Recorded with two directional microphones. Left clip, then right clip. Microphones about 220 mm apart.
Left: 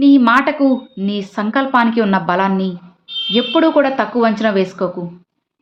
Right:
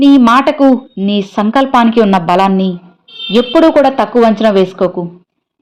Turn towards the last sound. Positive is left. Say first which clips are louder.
# right 7 dB
turn(degrees=-20)  # may be behind; listen again after turning